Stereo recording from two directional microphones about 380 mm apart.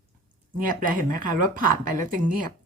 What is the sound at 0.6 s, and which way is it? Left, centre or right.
Speech, right.